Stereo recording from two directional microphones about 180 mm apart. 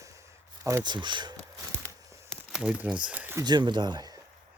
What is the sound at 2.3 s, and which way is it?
Crumpling, 5° right (ahead or behind).